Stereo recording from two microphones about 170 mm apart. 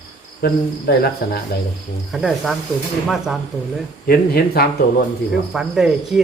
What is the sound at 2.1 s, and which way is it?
Speech, centre (ahead or behind).